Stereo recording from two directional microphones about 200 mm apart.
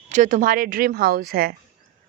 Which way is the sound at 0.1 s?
40° right (ahead or behind).